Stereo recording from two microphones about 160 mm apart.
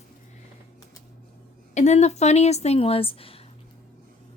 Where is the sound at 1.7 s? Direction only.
45° left (ahead or behind).